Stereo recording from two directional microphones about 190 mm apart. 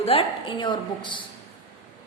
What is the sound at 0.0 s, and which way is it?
A woman's voice, 30° left (ahead or behind).